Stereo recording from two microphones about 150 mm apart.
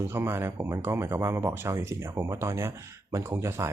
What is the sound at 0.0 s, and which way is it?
Speech, 15° right (ahead or behind).